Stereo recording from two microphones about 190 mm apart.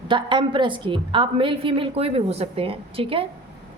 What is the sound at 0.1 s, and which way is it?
A woman's voice, 25° right (ahead or behind).